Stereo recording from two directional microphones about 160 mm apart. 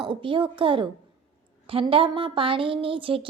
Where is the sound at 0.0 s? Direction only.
30° right (ahead or behind).